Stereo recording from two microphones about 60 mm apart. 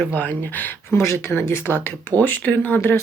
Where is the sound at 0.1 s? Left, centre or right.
Left.